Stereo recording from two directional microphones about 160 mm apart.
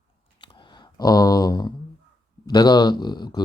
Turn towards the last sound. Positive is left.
turn(degrees=30)  # may be behind; listen again after turning